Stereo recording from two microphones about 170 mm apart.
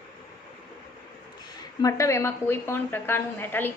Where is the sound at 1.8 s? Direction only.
20° left (ahead or behind).